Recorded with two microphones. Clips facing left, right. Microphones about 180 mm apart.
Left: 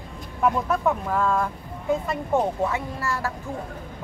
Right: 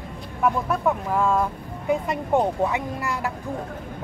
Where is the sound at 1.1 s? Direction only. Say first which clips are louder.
Right 2 dB; 10° right (ahead or behind).